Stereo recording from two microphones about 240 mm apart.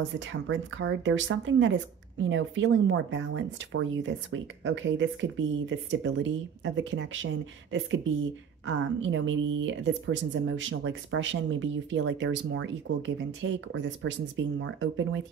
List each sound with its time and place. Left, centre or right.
0.3 s speech: right
8.6 s speech: right